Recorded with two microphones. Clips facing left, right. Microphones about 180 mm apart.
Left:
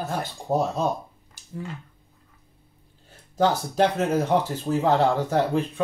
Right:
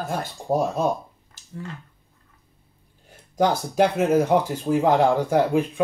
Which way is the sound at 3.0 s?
10° right (ahead or behind).